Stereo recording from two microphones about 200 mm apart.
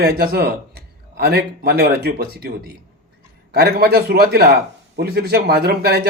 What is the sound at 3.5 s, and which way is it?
Speech, 50° right (ahead or behind).